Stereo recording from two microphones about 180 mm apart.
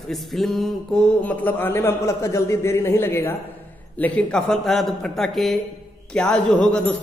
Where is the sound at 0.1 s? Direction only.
Centre (ahead or behind).